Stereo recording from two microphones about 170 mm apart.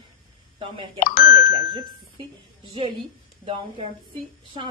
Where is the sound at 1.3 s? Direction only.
30° right (ahead or behind).